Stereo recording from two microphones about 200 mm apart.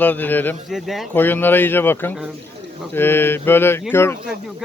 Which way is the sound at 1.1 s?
10° left (ahead or behind).